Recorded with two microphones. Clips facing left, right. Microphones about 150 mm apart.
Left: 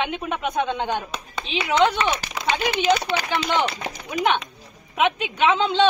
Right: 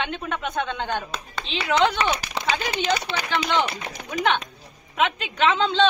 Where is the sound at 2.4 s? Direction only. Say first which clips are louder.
Left 1 dB; 25° right (ahead or behind).